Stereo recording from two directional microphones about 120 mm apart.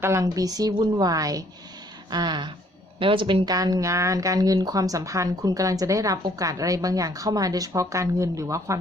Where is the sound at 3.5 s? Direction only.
30° right (ahead or behind).